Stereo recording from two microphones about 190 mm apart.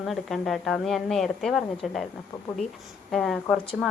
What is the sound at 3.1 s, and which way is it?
Speech, centre (ahead or behind).